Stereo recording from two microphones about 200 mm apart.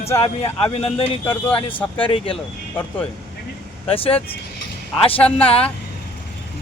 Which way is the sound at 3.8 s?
30° left (ahead or behind).